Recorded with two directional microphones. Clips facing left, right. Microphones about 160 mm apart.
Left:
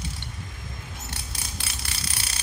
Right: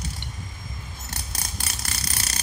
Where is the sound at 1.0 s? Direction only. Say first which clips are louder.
Right 1 dB; 40° right (ahead or behind).